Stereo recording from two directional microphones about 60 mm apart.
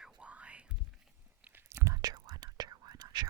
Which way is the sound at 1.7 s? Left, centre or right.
Right.